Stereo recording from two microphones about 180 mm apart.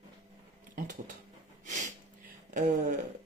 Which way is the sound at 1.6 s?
45° right (ahead or behind).